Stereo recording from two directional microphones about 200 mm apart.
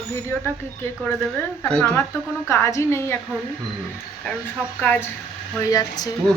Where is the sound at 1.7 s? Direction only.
10° left (ahead or behind).